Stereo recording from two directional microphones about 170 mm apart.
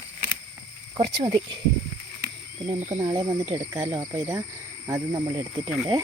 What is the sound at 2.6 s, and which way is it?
Speech, 25° right (ahead or behind).